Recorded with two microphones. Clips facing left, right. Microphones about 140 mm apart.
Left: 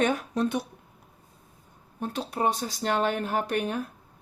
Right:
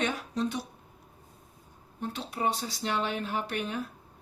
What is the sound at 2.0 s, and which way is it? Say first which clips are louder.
Speech: left 4 dB; 45° left (ahead or behind).